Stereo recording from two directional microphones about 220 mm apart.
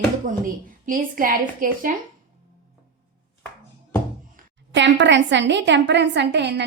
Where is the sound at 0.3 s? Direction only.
40° right (ahead or behind).